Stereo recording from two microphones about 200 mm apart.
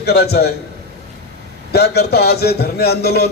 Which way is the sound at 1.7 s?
55° left (ahead or behind).